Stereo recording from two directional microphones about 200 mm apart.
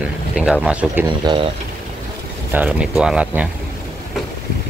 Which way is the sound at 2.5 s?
10° right (ahead or behind).